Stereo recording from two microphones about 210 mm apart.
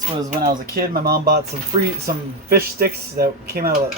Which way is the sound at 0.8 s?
45° right (ahead or behind).